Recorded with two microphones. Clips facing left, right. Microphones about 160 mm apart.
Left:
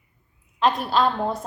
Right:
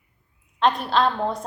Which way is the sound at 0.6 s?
Centre (ahead or behind).